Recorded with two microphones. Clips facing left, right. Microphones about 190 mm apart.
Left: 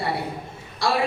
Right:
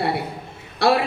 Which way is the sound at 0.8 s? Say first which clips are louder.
Right 6 dB; 60° right (ahead or behind).